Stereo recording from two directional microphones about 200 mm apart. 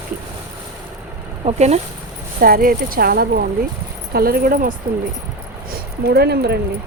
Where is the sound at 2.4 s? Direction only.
45° right (ahead or behind).